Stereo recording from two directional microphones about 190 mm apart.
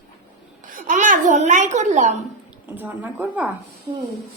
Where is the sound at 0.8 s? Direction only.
45° right (ahead or behind).